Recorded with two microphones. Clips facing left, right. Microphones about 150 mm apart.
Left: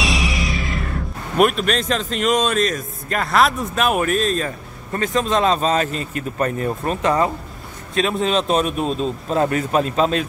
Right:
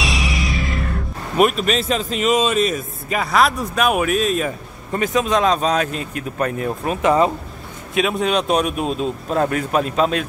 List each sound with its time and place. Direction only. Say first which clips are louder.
0.0 s speech: left 1 dB; centre (ahead or behind)
7.0 s speech: right 4 dB; 20° right (ahead or behind)
7.9 s speech: even; 5° right (ahead or behind)